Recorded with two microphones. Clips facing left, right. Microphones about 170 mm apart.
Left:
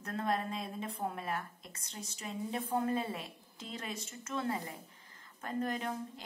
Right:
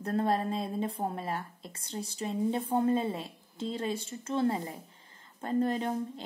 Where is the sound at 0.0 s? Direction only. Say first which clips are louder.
Right 6 dB; 35° right (ahead or behind).